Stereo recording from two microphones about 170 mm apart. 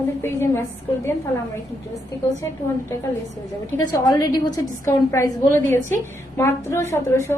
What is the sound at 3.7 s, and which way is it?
A woman's voice, 20° left (ahead or behind).